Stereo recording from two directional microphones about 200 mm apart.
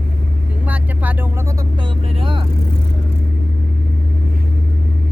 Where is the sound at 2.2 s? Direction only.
25° right (ahead or behind).